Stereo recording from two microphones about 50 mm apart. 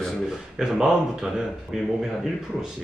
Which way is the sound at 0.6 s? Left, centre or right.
Centre.